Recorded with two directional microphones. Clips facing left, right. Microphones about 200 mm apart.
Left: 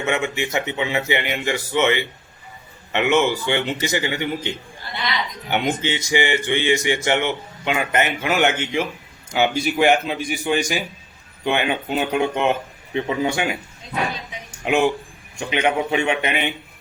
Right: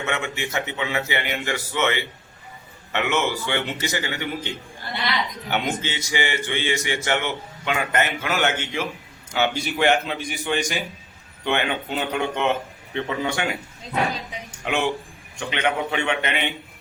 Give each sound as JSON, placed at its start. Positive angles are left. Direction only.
{"t": 0.0, "sound": "a man's voice", "side_deg": 15}
{"t": 5.5, "sound": "a man's voice", "side_deg": 15}
{"t": 14.6, "sound": "a man's voice", "side_deg": 10}